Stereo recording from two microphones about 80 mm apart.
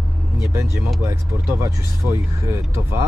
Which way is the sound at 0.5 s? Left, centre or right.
Right.